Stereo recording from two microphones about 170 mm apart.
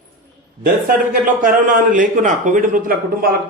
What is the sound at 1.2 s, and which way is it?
A man's voice, 55° right (ahead or behind).